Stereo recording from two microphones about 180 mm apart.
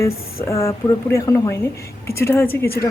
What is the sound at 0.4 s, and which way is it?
A woman's voice, 15° left (ahead or behind).